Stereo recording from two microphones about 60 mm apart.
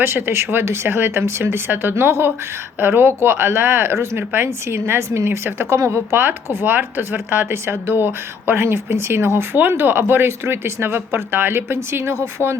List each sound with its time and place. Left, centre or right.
0.0 s speech: right
4.2 s speech: right
4.4 s a woman's voice: right